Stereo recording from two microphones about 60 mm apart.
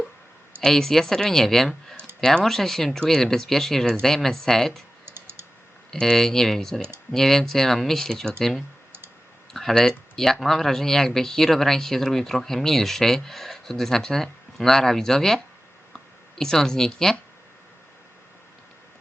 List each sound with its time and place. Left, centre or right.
0.6 s speech: centre
5.0 s typing: right
5.9 s speech: centre
16.4 s speech: centre